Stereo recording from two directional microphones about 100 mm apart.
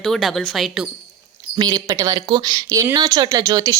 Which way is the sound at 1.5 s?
40° right (ahead or behind).